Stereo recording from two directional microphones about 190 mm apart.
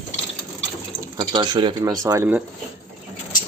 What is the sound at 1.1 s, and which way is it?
Speech, 20° right (ahead or behind).